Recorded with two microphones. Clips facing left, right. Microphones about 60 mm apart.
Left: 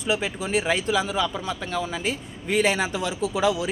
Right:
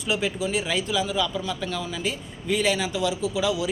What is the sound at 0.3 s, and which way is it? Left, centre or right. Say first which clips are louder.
Speech: left 2 dB; left.